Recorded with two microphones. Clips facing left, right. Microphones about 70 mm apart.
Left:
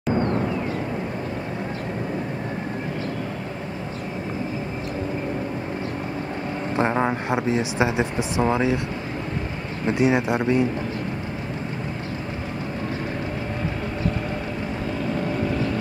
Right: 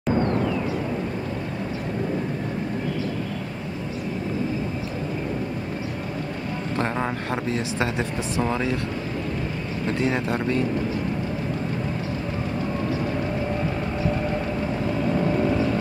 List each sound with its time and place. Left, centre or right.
0.1 s vehicle: left
6.8 s speech: centre
9.8 s speech: centre
15.1 s vehicle: centre